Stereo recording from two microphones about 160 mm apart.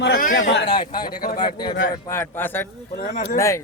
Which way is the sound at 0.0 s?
70° left (ahead or behind).